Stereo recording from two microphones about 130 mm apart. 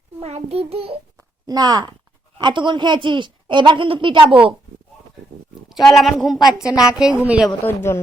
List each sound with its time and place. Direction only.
0.2 s a sound: 55° right (ahead or behind)
1.5 s a woman's voice: 30° right (ahead or behind)
5.6 s speech: centre (ahead or behind)
6.7 s speech: 25° left (ahead or behind)
6.9 s speech: 5° right (ahead or behind)
7.6 s speech: 20° left (ahead or behind)